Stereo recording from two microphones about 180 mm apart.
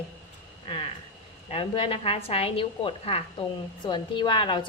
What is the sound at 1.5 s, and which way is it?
A woman's voice, 30° left (ahead or behind).